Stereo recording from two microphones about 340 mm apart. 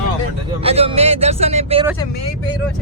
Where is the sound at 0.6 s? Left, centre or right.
Centre.